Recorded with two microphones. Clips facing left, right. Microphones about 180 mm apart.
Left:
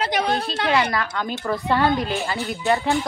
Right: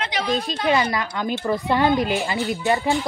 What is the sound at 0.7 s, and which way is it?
Speech, 15° right (ahead or behind).